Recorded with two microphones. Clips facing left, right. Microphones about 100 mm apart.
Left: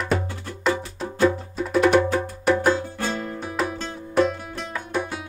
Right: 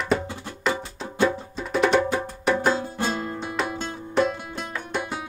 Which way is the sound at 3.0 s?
25° right (ahead or behind).